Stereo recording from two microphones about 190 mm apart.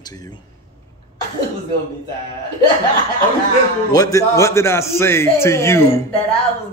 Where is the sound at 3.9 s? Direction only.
20° left (ahead or behind).